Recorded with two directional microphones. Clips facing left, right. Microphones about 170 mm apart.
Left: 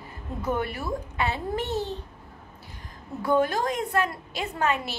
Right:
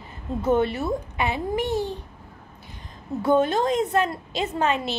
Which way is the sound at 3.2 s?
25° right (ahead or behind).